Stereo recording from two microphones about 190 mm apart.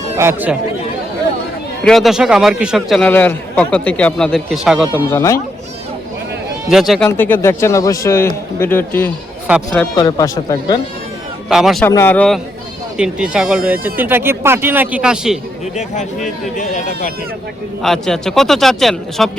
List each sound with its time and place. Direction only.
0.2 s speech: 10° right (ahead or behind)
1.8 s a man's voice: centre (ahead or behind)
5.1 s speech: 15° left (ahead or behind)
6.7 s a man's voice: centre (ahead or behind)
7.1 s speech: 10° left (ahead or behind)
9.9 s speech: 20° left (ahead or behind)
11.4 s a man's voice: centre (ahead or behind)
11.9 s speech: 10° left (ahead or behind)
13.0 s speech: 5° right (ahead or behind)
15.7 s speech: 40° left (ahead or behind)
17.8 s a man's voice: centre (ahead or behind)